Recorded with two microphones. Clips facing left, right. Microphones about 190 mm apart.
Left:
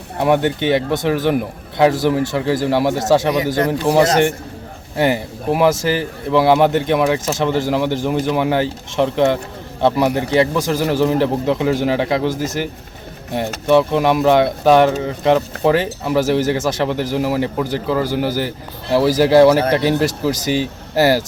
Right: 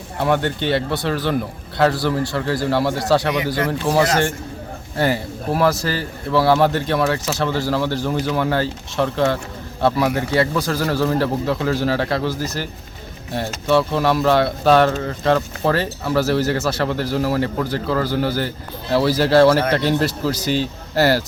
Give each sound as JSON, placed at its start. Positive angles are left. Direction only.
{"t": 0.2, "sound": "speech", "side_deg": 15}